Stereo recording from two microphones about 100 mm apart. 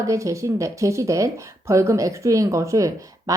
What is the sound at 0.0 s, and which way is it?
Speech, 30° right (ahead or behind).